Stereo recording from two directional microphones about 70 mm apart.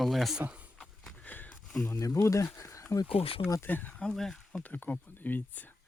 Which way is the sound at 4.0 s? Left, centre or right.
Centre.